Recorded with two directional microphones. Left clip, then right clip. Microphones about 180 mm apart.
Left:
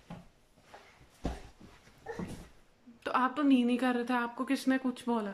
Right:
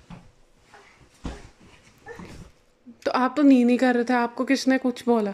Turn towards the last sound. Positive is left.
turn(degrees=-25)  # may be behind; listen again after turning